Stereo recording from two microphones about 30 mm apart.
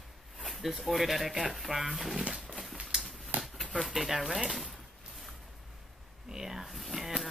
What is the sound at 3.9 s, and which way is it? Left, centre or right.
Speech, centre.